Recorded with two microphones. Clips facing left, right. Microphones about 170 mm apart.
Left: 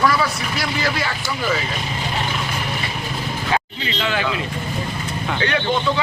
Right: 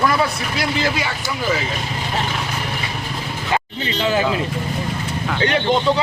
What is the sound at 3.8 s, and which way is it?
Speech, 30° right (ahead or behind).